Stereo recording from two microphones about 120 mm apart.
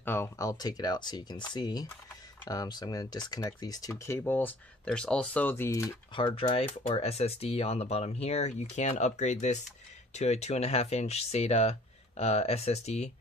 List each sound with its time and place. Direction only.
0.0 s speech: 20° left (ahead or behind)
6.1 s speech: 45° left (ahead or behind)
7.0 s speech: 60° left (ahead or behind)